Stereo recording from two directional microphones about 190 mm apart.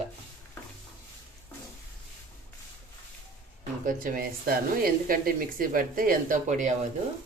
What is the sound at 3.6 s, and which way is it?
Speech, 45° right (ahead or behind).